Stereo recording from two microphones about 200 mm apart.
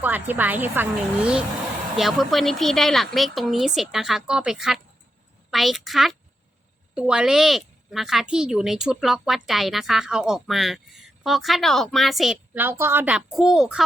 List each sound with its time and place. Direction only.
0.0 s a woman's voice: 10° right (ahead or behind)